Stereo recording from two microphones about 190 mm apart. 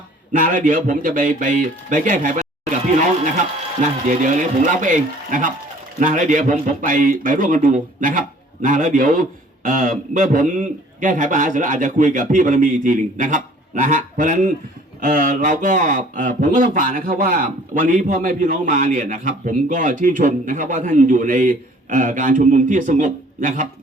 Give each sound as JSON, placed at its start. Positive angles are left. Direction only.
{"t": 0.3, "sound": "a man's voice", "side_deg": -45}